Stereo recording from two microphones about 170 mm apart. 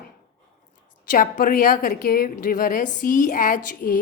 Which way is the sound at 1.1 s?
55° left (ahead or behind).